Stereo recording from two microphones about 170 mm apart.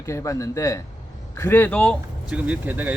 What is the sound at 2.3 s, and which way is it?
Speech, 10° right (ahead or behind).